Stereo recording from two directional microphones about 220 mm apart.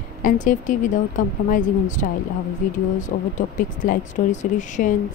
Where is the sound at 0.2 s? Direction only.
35° left (ahead or behind).